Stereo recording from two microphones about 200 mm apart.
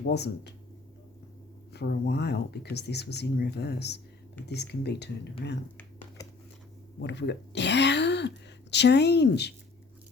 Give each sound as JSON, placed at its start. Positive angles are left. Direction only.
{"t": 0.0, "sound": "speech", "side_deg": 55}
{"t": 1.7, "sound": "speech", "side_deg": 55}
{"t": 7.0, "sound": "speech", "side_deg": 60}